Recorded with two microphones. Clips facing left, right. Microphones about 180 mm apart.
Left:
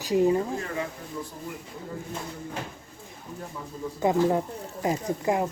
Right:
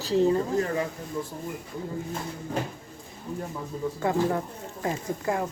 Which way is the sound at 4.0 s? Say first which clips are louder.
Left 4 dB; 20° left (ahead or behind).